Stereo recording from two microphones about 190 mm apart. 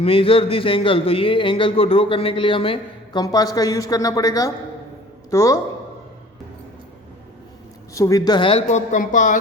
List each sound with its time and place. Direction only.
0.0 s a man's voice: 30° left (ahead or behind)
7.9 s speech: 15° left (ahead or behind); by 9.4 s 45° left (ahead or behind)